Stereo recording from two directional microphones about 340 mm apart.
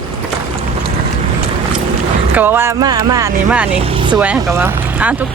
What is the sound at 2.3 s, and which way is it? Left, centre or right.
Speech, centre.